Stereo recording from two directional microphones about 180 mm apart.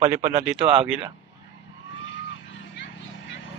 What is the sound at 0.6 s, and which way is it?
Speech, 30° right (ahead or behind).